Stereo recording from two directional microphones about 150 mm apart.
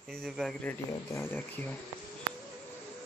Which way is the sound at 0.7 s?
15° left (ahead or behind).